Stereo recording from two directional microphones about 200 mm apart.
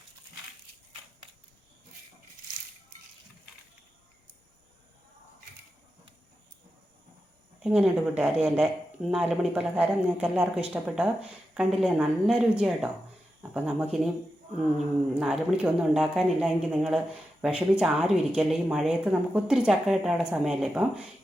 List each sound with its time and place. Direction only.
7.6 s speech: 5° right (ahead or behind)
15.2 s speech: 5° right (ahead or behind)